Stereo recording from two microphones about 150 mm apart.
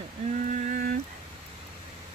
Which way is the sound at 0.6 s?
60° right (ahead or behind).